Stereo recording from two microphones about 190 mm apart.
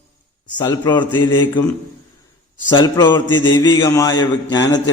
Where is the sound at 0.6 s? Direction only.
20° left (ahead or behind).